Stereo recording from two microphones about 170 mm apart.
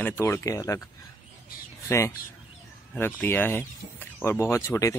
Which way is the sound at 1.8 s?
15° left (ahead or behind).